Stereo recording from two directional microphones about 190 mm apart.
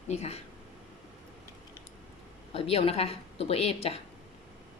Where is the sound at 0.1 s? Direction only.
35° left (ahead or behind).